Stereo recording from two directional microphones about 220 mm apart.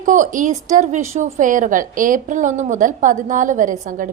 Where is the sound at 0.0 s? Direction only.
35° right (ahead or behind).